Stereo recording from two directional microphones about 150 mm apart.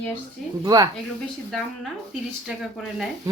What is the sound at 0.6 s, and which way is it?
Mantra, 25° right (ahead or behind).